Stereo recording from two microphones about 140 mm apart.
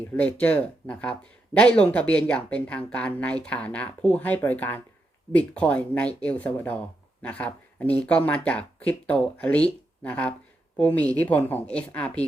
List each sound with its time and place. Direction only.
0.2 s speech: 10° left (ahead or behind)